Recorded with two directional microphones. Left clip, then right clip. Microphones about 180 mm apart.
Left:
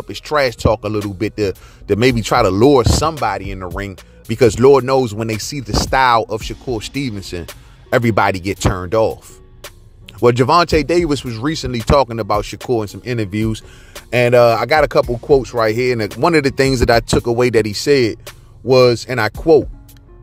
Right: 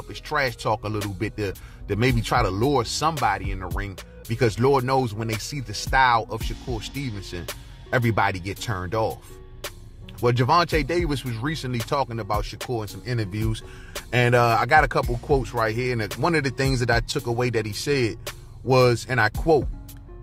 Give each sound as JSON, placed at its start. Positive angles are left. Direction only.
{"t": 0.1, "sound": "speech", "side_deg": 45}